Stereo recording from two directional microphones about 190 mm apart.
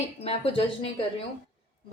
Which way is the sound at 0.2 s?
30° left (ahead or behind).